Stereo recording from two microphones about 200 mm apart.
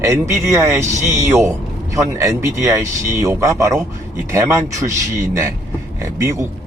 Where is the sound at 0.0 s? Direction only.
15° right (ahead or behind).